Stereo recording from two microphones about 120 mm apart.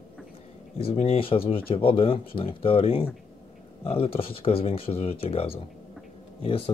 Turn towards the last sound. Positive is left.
turn(degrees=50)  # may be behind; listen again after turning